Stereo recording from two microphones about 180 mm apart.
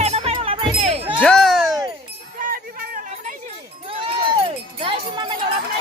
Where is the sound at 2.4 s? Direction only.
50° right (ahead or behind).